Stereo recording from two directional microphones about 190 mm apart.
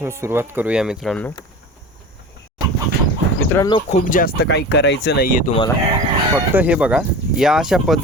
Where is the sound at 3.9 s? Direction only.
45° left (ahead or behind).